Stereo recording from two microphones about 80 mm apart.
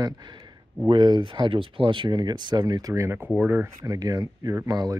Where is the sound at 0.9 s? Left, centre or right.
Right.